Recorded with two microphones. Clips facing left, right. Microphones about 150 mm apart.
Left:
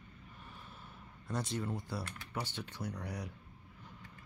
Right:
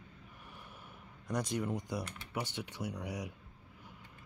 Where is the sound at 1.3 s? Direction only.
15° right (ahead or behind).